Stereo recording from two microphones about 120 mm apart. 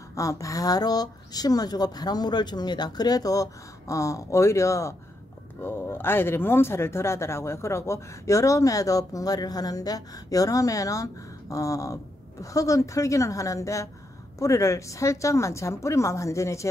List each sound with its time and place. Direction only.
0.1 s speech: 25° left (ahead or behind)